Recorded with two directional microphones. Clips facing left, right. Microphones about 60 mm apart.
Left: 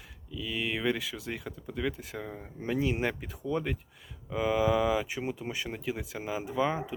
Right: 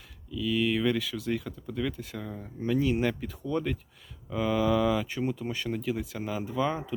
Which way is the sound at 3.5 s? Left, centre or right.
Centre.